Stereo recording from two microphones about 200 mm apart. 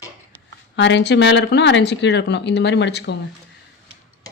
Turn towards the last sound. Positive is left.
turn(degrees=60)  # may be behind; listen again after turning